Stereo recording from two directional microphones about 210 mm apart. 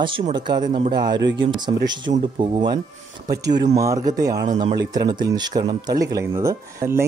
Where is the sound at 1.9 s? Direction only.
20° right (ahead or behind).